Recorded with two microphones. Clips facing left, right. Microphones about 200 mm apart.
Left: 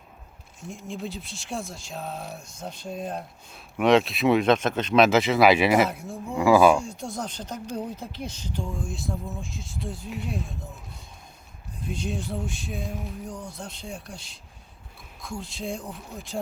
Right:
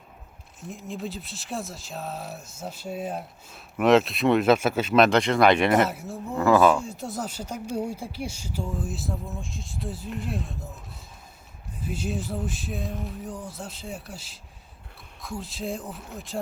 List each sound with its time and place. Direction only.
0.6 s speech: centre (ahead or behind)
6.3 s speech: 10° left (ahead or behind)
6.8 s speech: 5° right (ahead or behind)
11.8 s speech: 5° right (ahead or behind)